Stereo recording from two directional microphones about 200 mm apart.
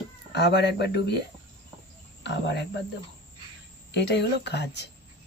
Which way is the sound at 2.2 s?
60° left (ahead or behind).